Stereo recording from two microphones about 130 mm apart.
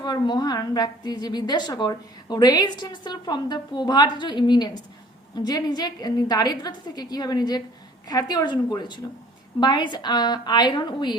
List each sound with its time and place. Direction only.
0.0 s a woman's voice: 30° left (ahead or behind)